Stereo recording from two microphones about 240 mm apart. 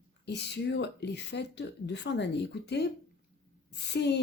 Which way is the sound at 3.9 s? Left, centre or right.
Left.